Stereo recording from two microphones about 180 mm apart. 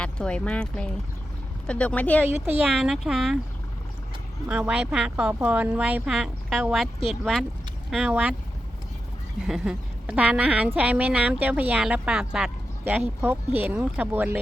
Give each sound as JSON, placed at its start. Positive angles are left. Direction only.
{"t": 0.0, "sound": "speech", "side_deg": 5}
{"t": 2.2, "sound": "a woman's voice", "side_deg": -10}
{"t": 4.4, "sound": "a woman's voice", "side_deg": -10}
{"t": 9.5, "sound": "a woman's voice", "side_deg": -5}